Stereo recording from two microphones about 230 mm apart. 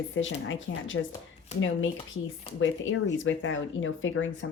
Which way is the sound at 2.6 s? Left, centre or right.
Left.